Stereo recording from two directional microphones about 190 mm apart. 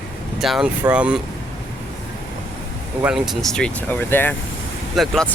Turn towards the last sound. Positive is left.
turn(degrees=5)  # may be behind; listen again after turning